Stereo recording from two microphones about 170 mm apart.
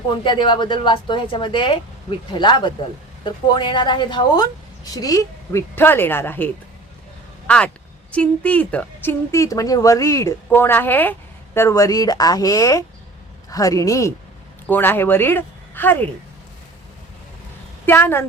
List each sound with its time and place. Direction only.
0.1 s a woman's voice: 25° left (ahead or behind); by 16.0 s 10° left (ahead or behind)
17.8 s a woman's voice: 10° left (ahead or behind)